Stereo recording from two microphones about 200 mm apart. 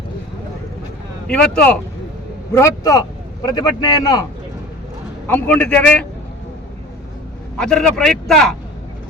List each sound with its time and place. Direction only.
1.3 s a man's voice: 5° left (ahead or behind)
5.3 s a man's voice: 5° left (ahead or behind)
7.6 s speech: 5° left (ahead or behind)